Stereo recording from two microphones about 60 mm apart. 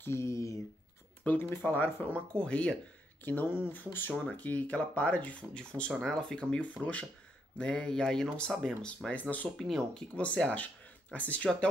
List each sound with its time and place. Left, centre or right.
0.0 s speech: left
1.2 s speech: left
2.1 s speech: centre
3.3 s speech: left
4.4 s speech: left
5.5 s speech: centre
6.6 s speech: left
7.5 s speech: centre
10.1 s speech: left